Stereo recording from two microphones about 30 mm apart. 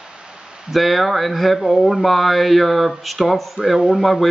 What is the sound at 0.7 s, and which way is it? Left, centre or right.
Speech, centre.